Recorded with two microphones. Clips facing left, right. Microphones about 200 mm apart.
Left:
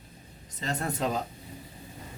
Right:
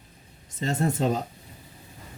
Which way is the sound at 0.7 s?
25° right (ahead or behind).